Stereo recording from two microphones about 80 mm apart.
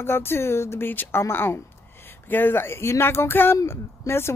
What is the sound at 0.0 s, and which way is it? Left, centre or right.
Speech, left.